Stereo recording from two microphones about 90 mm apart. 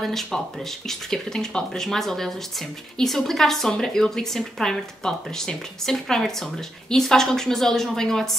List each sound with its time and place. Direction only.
0.0 s speech: centre (ahead or behind)